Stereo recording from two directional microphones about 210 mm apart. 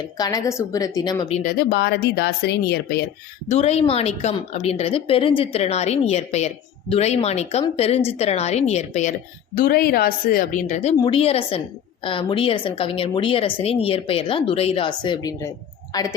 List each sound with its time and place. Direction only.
0.2 s a woman's voice: 15° left (ahead or behind)
1.4 s speech: 45° left (ahead or behind)
3.5 s a woman's voice: 30° left (ahead or behind)
9.6 s a woman's voice: 45° left (ahead or behind); by 16.1 s 15° left (ahead or behind)